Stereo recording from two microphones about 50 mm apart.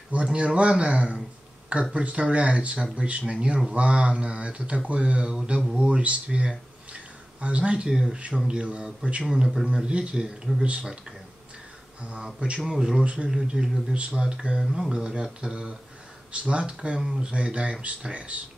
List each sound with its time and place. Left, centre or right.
0.1 s speech: right
10.2 s speech: centre
10.6 s speech: right
12.0 s speech: right
12.6 s speech: centre